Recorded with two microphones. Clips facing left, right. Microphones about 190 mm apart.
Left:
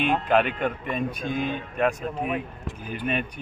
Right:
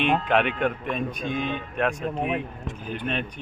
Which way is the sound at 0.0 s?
Centre (ahead or behind).